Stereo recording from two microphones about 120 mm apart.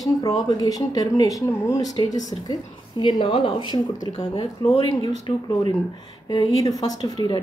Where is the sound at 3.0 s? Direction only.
40° left (ahead or behind).